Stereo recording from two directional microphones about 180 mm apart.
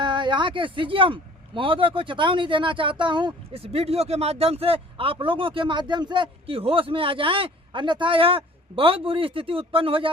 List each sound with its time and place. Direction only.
0.0 s speech: 25° right (ahead or behind)